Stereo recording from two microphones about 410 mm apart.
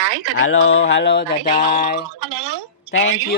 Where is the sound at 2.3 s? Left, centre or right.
Right.